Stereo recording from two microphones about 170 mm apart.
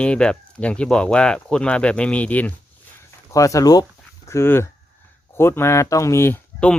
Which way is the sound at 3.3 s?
20° left (ahead or behind).